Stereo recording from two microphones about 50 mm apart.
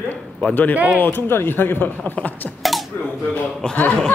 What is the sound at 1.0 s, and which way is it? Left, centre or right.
Speech, left.